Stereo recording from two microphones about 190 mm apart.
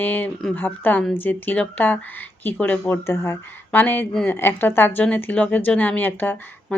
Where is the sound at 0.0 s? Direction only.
10° left (ahead or behind).